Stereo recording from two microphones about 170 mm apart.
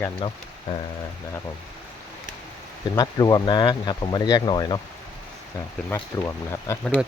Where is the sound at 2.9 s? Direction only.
20° left (ahead or behind).